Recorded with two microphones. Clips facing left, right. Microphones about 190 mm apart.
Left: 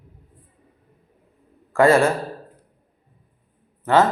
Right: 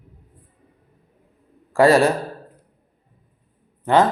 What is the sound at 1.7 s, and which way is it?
Speech, 35° right (ahead or behind).